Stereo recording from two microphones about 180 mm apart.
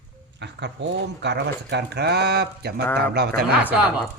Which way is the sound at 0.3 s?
75° right (ahead or behind).